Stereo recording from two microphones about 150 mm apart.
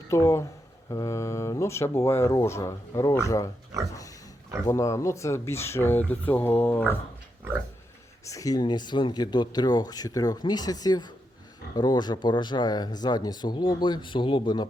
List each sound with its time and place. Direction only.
0.1 s speech: 20° left (ahead or behind)
3.7 s pig: 25° right (ahead or behind)
4.6 s speech: 20° left (ahead or behind)
8.2 s speech: 20° left (ahead or behind)